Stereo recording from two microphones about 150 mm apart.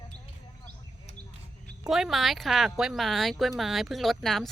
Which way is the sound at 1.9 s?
Centre (ahead or behind).